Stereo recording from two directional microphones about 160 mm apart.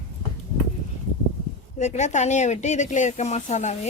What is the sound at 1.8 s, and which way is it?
Speech, 45° left (ahead or behind).